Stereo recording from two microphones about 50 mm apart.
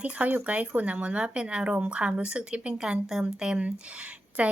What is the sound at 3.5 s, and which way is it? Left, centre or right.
Speech, right.